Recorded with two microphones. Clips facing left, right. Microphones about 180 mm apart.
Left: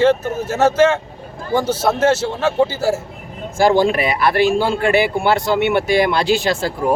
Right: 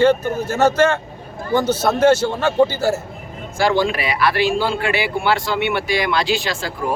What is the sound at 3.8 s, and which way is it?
Speech, 45° left (ahead or behind).